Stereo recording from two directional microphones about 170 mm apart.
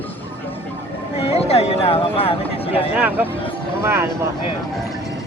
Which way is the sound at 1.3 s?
35° left (ahead or behind).